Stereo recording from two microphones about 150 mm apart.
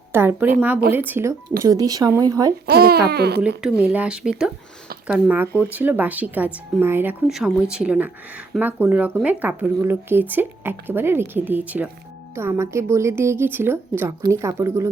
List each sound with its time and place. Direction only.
0.1 s speech: 15° right (ahead or behind)
2.6 s speech: 90° right
3.6 s speech: 10° right (ahead or behind)
7.3 s speech: centre (ahead or behind); by 14.8 s 20° right (ahead or behind)